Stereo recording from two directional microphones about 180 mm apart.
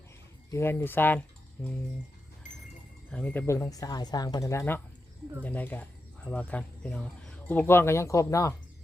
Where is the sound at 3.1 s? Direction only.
10° left (ahead or behind).